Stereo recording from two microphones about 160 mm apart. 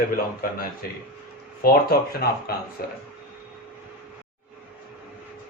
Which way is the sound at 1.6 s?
70° left (ahead or behind).